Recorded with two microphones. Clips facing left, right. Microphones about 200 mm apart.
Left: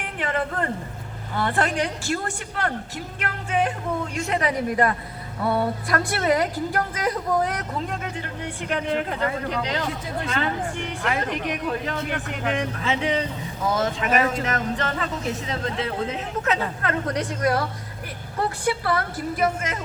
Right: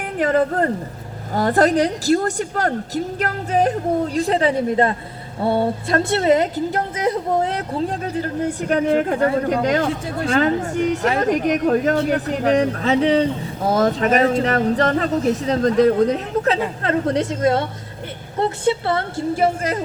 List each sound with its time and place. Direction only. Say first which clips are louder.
0.2 s a man's voice: right 9 dB; 40° right (ahead or behind)